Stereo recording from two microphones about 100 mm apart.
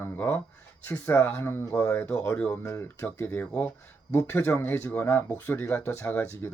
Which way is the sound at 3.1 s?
15° left (ahead or behind).